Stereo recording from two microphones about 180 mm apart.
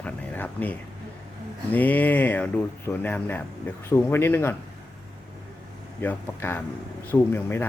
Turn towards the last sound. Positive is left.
turn(degrees=10)  # may be behind; listen again after turning